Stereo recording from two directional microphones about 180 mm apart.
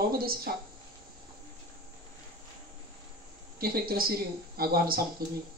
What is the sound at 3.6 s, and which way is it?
Speech, 55° right (ahead or behind).